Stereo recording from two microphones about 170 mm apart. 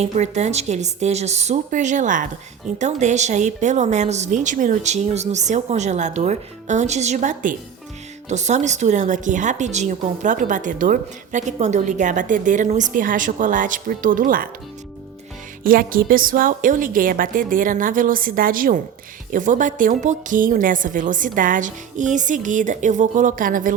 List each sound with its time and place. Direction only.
0.0 s speech: 40° right (ahead or behind)
15.6 s a woman's voice: 55° right (ahead or behind)